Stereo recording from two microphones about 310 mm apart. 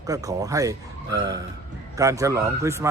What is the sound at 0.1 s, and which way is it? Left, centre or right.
Speech, centre.